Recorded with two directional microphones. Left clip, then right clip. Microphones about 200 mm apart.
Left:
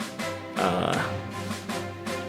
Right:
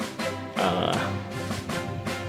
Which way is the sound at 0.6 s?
5° left (ahead or behind).